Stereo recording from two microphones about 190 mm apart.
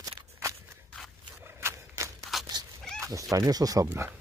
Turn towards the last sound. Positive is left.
turn(degrees=-15)  # may be behind; listen again after turning